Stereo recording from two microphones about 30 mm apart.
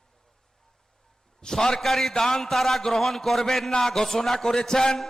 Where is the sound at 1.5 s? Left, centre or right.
Centre.